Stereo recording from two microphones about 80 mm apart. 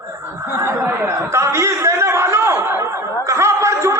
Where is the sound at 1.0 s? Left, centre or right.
Right.